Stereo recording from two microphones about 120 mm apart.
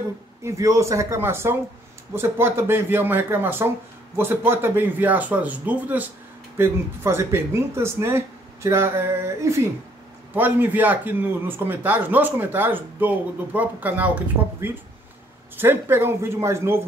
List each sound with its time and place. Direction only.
0.4 s speech: 25° right (ahead or behind)